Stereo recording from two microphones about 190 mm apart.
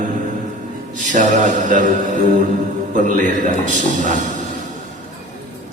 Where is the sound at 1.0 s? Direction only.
40° right (ahead or behind).